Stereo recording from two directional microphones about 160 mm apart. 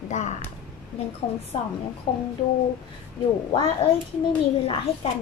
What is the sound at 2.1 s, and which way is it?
Speech, 30° left (ahead or behind).